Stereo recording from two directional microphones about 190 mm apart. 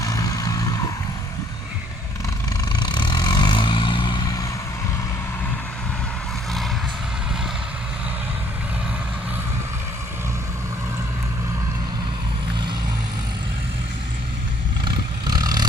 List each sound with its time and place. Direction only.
0.0 s vehicle: 20° left (ahead or behind)
2.7 s vehicle: 20° left (ahead or behind)
14.8 s vehicle: 20° right (ahead or behind)